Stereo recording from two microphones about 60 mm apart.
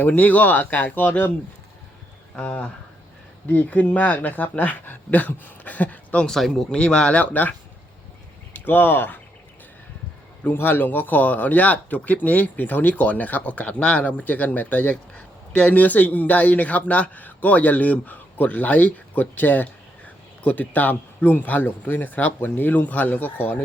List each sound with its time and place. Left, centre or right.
0.1 s speech: left
2.3 s speech: left
6.2 s speech: centre; by 7.5 s left
8.5 s speech: left
10.4 s speech: left